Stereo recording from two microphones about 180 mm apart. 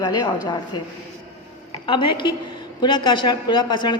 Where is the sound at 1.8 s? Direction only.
25° left (ahead or behind).